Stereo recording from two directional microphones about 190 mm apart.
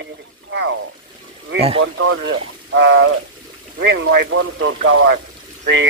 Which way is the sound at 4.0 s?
90° right.